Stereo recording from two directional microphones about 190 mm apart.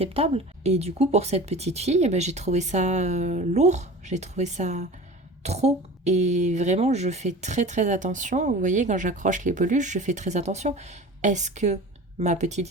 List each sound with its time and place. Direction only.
0.0 s speech: 30° right (ahead or behind)